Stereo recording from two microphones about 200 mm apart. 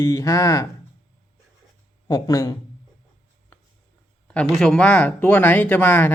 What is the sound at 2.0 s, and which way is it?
Speech, 15° left (ahead or behind).